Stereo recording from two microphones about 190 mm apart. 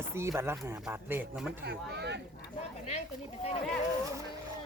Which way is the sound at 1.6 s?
60° right (ahead or behind).